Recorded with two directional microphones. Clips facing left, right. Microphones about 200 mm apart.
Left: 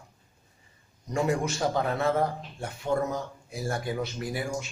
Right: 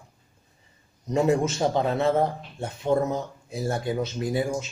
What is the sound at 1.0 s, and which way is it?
A man's voice, 20° right (ahead or behind).